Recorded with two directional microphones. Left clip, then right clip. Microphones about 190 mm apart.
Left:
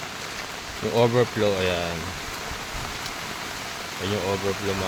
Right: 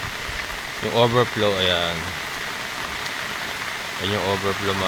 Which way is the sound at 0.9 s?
15° left (ahead or behind).